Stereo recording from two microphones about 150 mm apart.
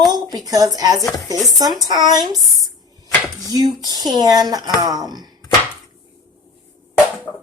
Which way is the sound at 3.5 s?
25° right (ahead or behind).